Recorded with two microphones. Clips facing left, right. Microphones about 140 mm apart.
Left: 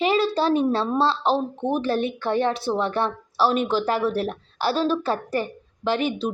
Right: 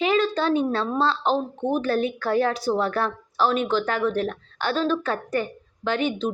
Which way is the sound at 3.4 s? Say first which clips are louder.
Left 1 dB; 35° left (ahead or behind).